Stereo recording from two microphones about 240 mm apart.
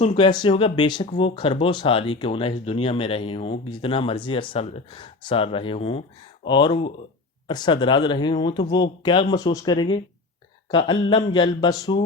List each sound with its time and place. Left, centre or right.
0.0 s speech: left